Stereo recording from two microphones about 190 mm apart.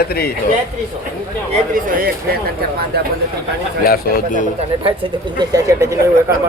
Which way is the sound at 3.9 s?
45° left (ahead or behind).